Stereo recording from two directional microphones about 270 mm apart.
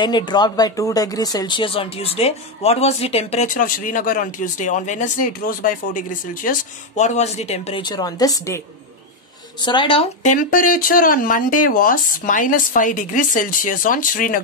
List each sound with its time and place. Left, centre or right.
0.0 s speech: centre